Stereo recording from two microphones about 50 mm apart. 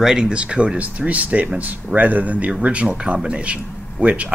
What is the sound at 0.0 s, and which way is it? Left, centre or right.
Speech, centre.